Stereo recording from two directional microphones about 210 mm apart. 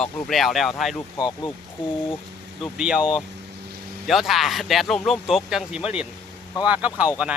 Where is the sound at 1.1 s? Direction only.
20° left (ahead or behind).